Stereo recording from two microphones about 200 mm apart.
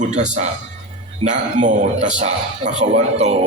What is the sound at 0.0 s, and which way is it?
A man's voice, 35° right (ahead or behind).